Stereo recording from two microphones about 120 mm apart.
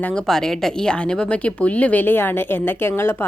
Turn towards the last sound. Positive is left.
turn(degrees=20)  # may be behind; listen again after turning